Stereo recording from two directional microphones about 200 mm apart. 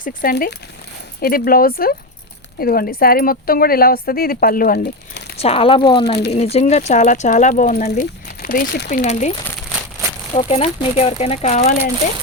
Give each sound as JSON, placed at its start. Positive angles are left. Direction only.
{"t": 0.0, "sound": "speech", "side_deg": 45}
{"t": 5.4, "sound": "speech", "side_deg": 30}
{"t": 10.3, "sound": "speech", "side_deg": 30}